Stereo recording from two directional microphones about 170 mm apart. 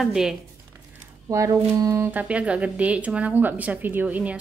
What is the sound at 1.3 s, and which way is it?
Speech, 20° right (ahead or behind).